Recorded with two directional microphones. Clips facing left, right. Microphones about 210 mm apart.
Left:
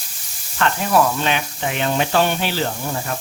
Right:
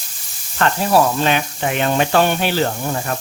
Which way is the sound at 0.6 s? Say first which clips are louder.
Right 2 dB; 40° right (ahead or behind).